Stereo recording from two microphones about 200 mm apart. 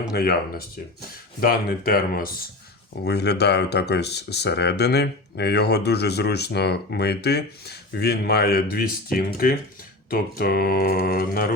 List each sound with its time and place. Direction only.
0.1 s mantra: 50° left (ahead or behind)
3.0 s speech: 55° left (ahead or behind)
10.1 s mantra: 45° left (ahead or behind)